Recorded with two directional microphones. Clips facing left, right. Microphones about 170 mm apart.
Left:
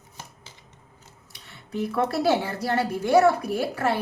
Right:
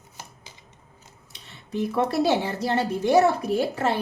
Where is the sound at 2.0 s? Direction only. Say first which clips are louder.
Even; 20° right (ahead or behind).